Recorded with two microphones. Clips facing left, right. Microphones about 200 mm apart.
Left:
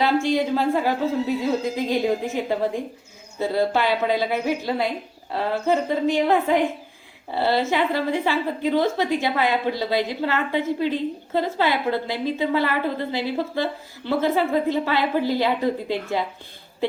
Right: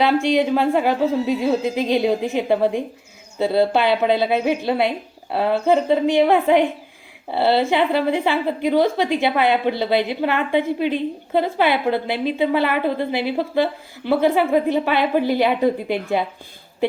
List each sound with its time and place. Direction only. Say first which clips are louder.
0.0 s a woman's voice: right 3 dB; 20° right (ahead or behind)